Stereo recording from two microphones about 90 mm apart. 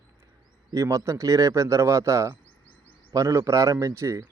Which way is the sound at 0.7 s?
35° right (ahead or behind).